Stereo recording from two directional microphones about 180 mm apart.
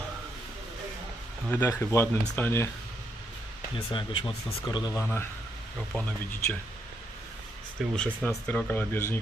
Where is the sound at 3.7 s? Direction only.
25° left (ahead or behind).